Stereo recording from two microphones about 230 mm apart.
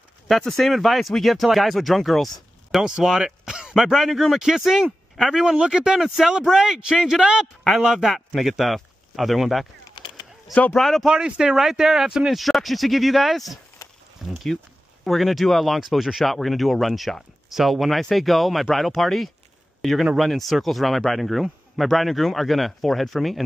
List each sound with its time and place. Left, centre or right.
0.3 s speech: centre
9.9 s a sound: left
10.5 s speech: centre